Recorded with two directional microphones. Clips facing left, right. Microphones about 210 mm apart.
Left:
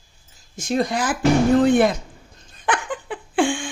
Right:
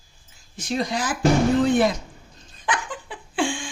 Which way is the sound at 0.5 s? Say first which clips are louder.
Left 4 dB; 50° left (ahead or behind).